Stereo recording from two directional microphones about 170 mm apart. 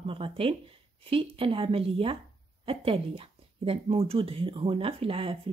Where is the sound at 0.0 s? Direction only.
30° right (ahead or behind).